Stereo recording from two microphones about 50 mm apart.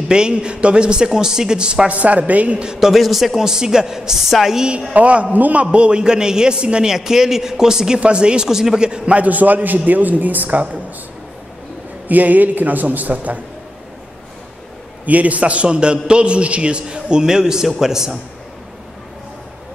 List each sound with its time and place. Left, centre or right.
0.1 s a man's voice: centre
2.9 s a woman's voice: centre
4.9 s a man's voice: right
12.1 s a man's voice: right
15.0 s a man's voice: right; by 18.2 s centre